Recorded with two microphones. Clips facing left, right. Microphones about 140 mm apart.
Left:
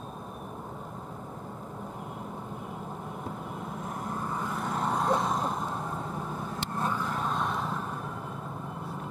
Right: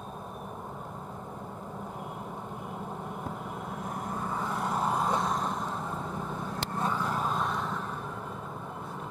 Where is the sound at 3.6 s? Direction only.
Centre (ahead or behind).